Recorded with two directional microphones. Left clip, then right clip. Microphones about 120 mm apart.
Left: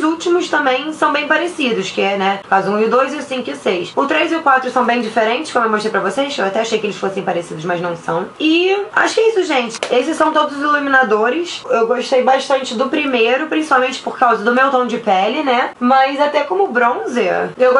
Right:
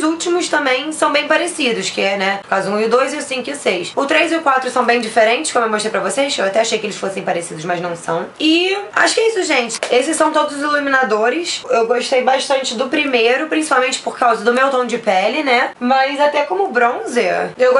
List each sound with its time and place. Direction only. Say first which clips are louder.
0.5 s speech: left 1 dB; 30° right (ahead or behind)